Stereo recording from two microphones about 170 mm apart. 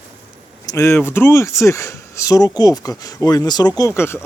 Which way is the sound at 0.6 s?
15° left (ahead or behind).